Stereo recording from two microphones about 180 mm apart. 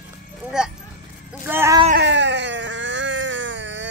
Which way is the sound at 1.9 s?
90° right.